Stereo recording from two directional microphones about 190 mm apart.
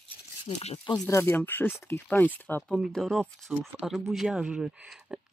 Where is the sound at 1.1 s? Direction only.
15° left (ahead or behind).